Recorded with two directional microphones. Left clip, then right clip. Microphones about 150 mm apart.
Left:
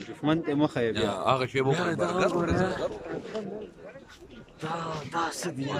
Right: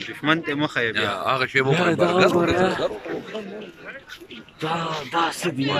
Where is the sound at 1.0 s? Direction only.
20° left (ahead or behind).